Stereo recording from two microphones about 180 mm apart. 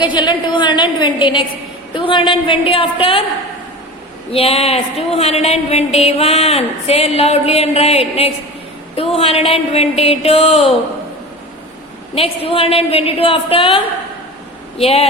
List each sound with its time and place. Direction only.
0.0 s a woman's voice: 25° left (ahead or behind)
4.3 s a woman's voice: 30° left (ahead or behind)
12.1 s a woman's voice: 30° left (ahead or behind)